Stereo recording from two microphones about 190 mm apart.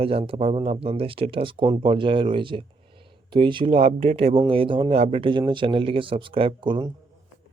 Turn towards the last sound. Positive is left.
turn(degrees=-25)  # may be behind; listen again after turning